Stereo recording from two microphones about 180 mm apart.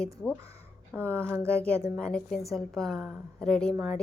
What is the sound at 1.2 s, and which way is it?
Speech, 15° right (ahead or behind).